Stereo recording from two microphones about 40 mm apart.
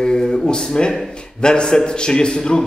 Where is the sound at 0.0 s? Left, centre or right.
Centre.